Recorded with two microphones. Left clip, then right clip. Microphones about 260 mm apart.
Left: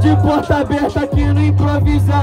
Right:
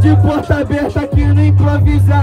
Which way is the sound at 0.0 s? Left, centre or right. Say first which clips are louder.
Even; left.